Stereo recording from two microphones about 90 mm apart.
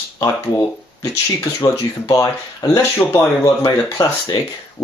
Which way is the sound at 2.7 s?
30° left (ahead or behind).